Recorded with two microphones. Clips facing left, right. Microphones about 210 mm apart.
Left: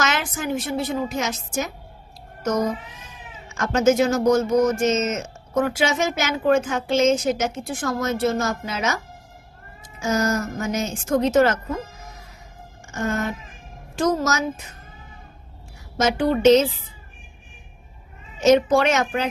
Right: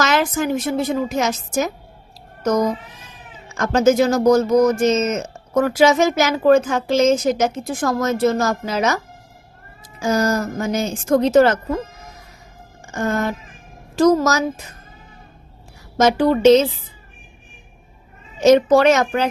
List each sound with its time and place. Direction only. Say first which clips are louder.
0.0 s a sound: right 6 dB; 40° right (ahead or behind)
1.2 s speech: right 6 dB; 40° right (ahead or behind)
10.0 s speech: right 3 dB; 35° right (ahead or behind)
13.0 s speech: right 4 dB; 35° right (ahead or behind)
16.0 s speech: right 5 dB; 40° right (ahead or behind)
18.3 s speech: right 4 dB; 35° right (ahead or behind)